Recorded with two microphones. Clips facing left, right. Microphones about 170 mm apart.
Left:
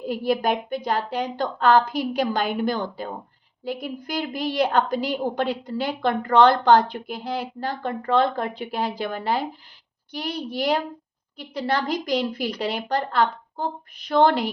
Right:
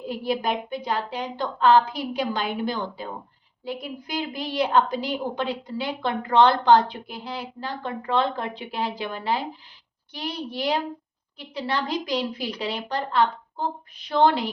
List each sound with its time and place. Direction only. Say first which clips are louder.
0.1 s a woman's voice: left 3 dB; 45° left (ahead or behind)
11.3 s a woman's voice: left 3 dB; 45° left (ahead or behind)